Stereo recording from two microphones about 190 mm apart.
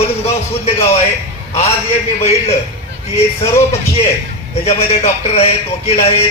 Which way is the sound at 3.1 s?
30° left (ahead or behind).